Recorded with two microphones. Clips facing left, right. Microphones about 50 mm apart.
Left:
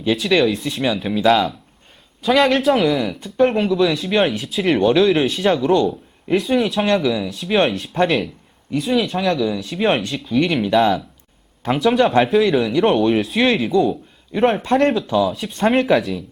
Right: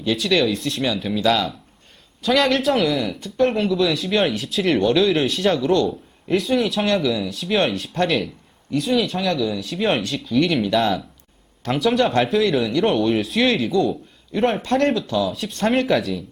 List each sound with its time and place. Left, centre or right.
0.2 s speech: centre